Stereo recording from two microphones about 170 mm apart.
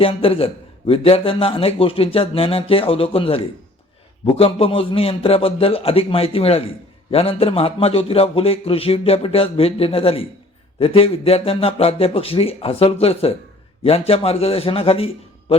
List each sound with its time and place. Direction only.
0.0 s a man's voice: 35° left (ahead or behind)